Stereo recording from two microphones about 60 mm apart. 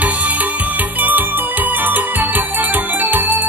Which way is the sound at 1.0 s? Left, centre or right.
Right.